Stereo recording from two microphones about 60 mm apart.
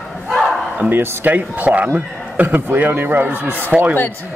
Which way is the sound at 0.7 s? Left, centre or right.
Right.